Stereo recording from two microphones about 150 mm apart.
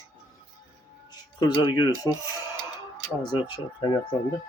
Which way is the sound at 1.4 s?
25° left (ahead or behind).